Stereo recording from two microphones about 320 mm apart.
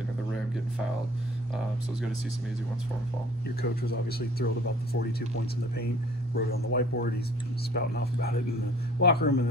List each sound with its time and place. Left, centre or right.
3.6 s speech: left
6.7 s speech: left